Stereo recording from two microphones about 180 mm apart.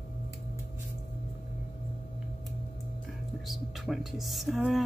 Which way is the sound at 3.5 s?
Centre (ahead or behind).